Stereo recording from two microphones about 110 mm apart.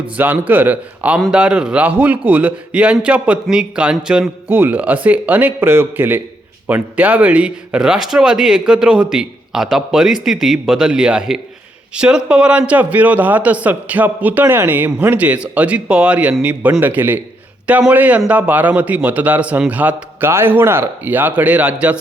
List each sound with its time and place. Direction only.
0.2 s speech: 15° right (ahead or behind)